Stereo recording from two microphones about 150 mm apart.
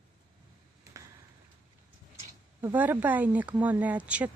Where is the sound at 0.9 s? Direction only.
20° right (ahead or behind).